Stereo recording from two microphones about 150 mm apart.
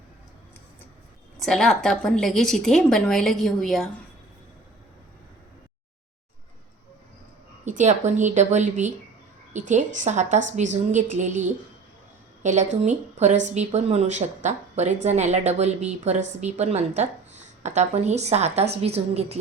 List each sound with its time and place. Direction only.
1.4 s a woman's voice: centre (ahead or behind)
7.6 s speech: 55° right (ahead or behind)